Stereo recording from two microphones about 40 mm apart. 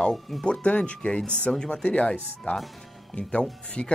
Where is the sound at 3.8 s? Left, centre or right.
Left.